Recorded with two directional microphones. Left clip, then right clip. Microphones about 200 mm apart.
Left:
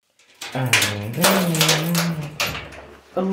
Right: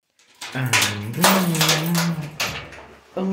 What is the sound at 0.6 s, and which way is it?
Speech, centre (ahead or behind).